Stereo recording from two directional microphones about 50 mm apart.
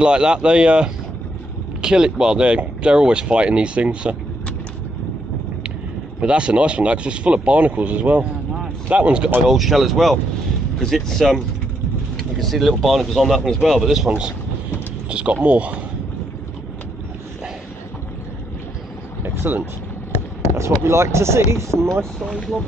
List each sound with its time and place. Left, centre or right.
0.0 s speech: centre
6.2 s speech: right
9.5 s speech: centre
11.2 s speech: centre; by 15.8 s right
19.2 s speech: right
20.5 s speech: right